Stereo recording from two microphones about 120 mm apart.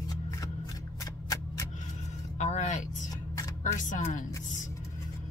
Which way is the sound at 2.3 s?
80° left.